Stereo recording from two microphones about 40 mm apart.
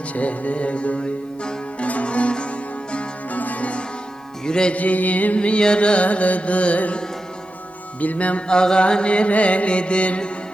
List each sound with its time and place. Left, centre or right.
0.1 s music: left
3.3 s music: left
4.4 s music: left
4.7 s music: left
5.4 s music: left
8.0 s music: left
8.4 s music: left